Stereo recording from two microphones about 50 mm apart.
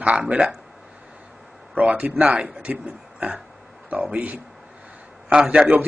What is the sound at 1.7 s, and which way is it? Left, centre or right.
Speech, right.